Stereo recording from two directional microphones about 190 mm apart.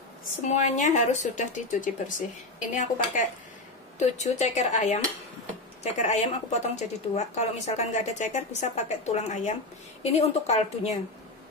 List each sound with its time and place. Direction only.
0.5 s speech: 40° left (ahead or behind)